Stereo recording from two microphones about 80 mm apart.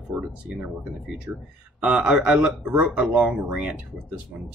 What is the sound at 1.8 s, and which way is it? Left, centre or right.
Speech, centre.